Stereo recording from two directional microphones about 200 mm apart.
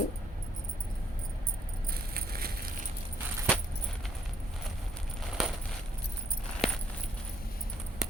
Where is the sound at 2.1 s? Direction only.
50° right (ahead or behind).